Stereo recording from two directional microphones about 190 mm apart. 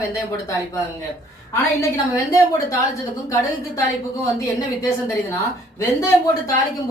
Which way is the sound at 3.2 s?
15° left (ahead or behind).